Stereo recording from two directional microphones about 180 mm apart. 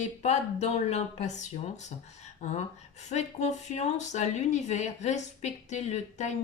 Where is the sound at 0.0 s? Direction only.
40° left (ahead or behind).